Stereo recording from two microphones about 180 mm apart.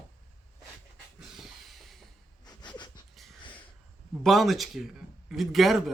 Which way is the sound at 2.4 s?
25° left (ahead or behind).